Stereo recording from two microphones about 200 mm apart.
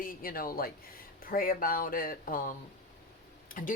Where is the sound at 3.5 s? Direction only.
45° left (ahead or behind).